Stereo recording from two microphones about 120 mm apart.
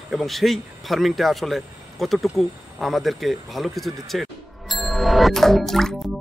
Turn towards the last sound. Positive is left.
turn(degrees=0)  # may be behind; listen again after turning